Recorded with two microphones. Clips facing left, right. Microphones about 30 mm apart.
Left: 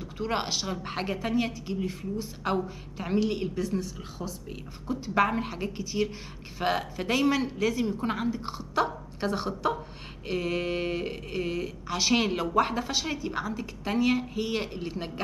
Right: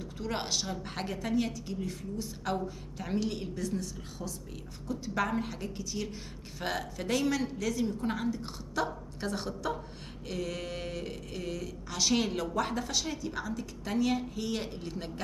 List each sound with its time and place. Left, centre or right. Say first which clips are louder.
0.0 s a woman's voice: left 5 dB; left